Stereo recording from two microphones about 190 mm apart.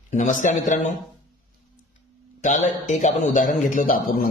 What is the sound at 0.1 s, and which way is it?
Speech, 40° left (ahead or behind).